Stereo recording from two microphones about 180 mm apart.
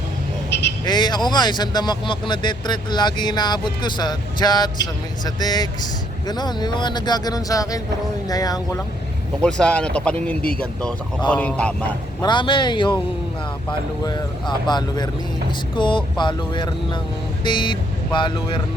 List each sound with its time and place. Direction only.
0.9 s speech: 25° left (ahead or behind)
9.4 s a man's voice: 5° left (ahead or behind)
12.2 s speech: 25° left (ahead or behind)
14.0 s speech: 25° left (ahead or behind)